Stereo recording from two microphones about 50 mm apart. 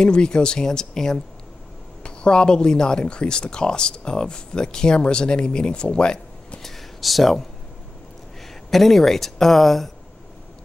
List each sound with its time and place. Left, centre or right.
0.0 s speech: centre
6.6 s a sound: centre
8.6 s speech: centre